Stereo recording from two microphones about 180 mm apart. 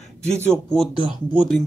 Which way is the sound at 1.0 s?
30° left (ahead or behind).